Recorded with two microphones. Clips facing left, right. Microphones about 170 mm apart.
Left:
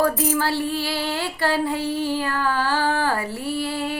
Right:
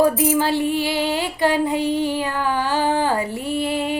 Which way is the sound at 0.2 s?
15° right (ahead or behind).